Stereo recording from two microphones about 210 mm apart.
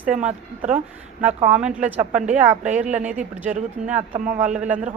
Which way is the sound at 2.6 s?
35° right (ahead or behind).